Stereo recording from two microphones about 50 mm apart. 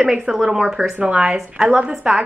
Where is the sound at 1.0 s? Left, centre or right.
Right.